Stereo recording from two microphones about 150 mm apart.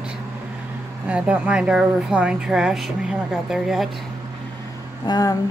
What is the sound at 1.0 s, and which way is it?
Speech, 10° right (ahead or behind).